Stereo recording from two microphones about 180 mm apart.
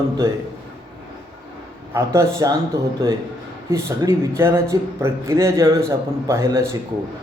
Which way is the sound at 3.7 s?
15° right (ahead or behind).